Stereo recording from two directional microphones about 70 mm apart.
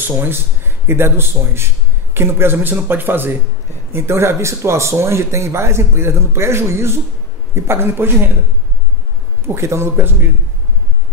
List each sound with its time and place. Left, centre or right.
0.0 s speech: right
9.5 s speech: right